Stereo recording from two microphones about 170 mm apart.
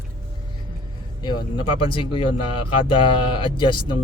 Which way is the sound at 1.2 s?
25° left (ahead or behind).